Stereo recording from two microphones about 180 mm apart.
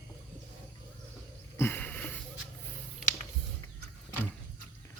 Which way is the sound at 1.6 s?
10° left (ahead or behind).